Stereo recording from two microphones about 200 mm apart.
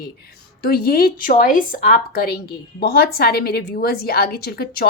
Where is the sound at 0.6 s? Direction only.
50° left (ahead or behind).